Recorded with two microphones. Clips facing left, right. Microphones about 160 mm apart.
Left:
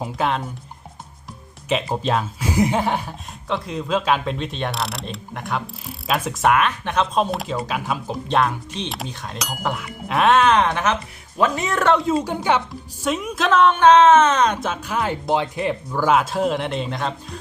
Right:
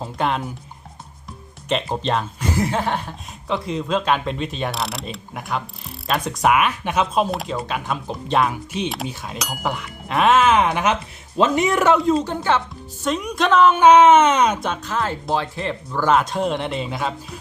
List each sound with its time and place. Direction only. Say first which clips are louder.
0.2 s speech: right 1 dB; centre (ahead or behind)
1.7 s speech: left 1 dB; 5° left (ahead or behind)
3.4 s speech: right 2 dB; centre (ahead or behind)
11.3 s speech: right 3 dB; 20° right (ahead or behind)
12.0 s speech: right 1 dB; 5° left (ahead or behind); by 14.6 s 10° right (ahead or behind)
14.6 s speech: even; 5° left (ahead or behind)
15.9 s speech: right 1 dB; 5° left (ahead or behind)